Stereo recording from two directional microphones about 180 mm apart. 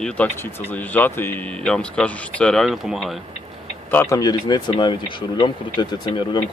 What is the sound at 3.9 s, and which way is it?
Speech, 15° left (ahead or behind).